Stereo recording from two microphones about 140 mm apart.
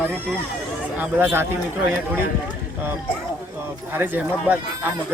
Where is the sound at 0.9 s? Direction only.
15° right (ahead or behind).